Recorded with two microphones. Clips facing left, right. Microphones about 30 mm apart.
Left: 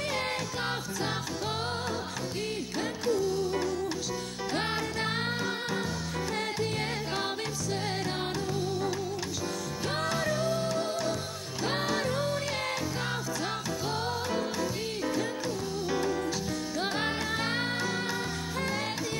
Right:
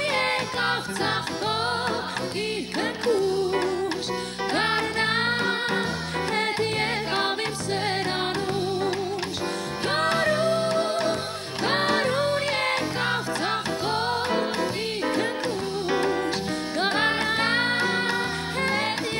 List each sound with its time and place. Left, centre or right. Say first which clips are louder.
0.1 s music: right 7 dB; right
2.8 s music: right 6 dB; right
9.8 s music: right 8 dB; right